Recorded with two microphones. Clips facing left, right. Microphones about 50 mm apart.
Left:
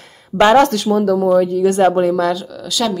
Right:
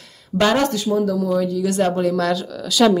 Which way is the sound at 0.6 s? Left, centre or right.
Left.